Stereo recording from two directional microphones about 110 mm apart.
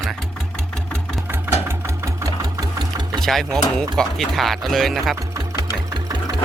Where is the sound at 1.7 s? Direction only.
25° right (ahead or behind).